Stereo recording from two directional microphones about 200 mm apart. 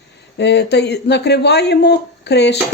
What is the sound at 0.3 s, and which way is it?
Speech, 55° left (ahead or behind).